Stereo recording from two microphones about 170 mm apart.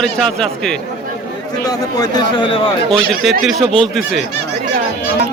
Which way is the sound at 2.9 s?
5° left (ahead or behind).